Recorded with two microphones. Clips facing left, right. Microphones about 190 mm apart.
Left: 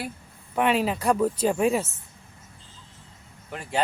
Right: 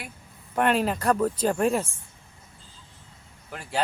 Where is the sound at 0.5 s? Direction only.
5° left (ahead or behind).